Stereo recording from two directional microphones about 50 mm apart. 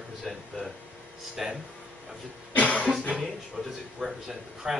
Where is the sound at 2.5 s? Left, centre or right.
Left.